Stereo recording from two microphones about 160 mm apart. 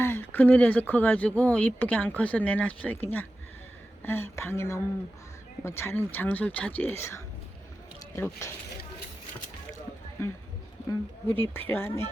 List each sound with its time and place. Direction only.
0.0 s speech: 15° left (ahead or behind)
8.1 s speech: 15° left (ahead or behind)
10.8 s speech: 15° left (ahead or behind)